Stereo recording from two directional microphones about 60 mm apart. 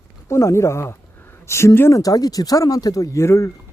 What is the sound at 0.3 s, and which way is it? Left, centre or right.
Speech, left.